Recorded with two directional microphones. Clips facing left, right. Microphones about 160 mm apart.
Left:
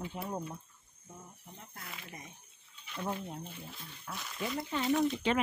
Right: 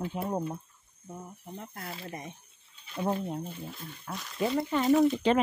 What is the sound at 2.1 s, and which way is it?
Speech, 75° right (ahead or behind).